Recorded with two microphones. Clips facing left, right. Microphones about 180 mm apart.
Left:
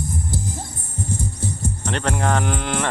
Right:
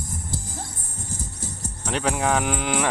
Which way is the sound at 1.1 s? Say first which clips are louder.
Left 8 dB; 30° left (ahead or behind).